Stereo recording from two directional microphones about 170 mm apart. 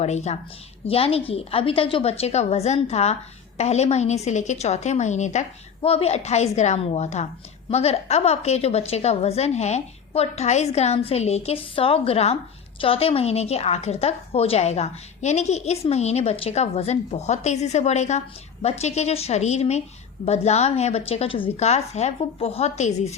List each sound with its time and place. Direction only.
0.0 s a woman's voice: 40° left (ahead or behind)